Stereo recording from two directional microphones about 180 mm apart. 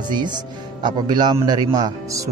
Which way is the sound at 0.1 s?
25° right (ahead or behind).